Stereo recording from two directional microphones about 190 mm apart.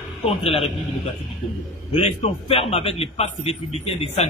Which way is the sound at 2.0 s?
30° left (ahead or behind).